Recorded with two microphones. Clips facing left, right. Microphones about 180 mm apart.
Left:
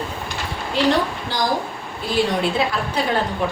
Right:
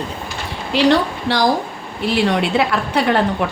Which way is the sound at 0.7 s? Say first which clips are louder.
Right 4 dB; 75° right (ahead or behind).